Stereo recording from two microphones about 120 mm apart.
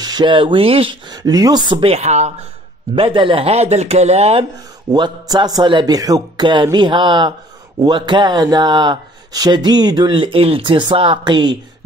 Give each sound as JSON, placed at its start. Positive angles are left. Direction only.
{"t": 0.0, "sound": "speech", "side_deg": -35}
{"t": 1.1, "sound": "speech", "side_deg": -35}
{"t": 1.8, "sound": "speech", "side_deg": -60}
{"t": 3.0, "sound": "speech", "side_deg": -45}
{"t": 4.9, "sound": "speech", "side_deg": -35}